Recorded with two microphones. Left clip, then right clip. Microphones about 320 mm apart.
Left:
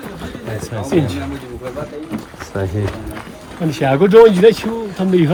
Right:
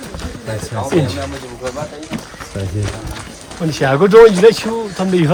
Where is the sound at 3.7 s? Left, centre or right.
Centre.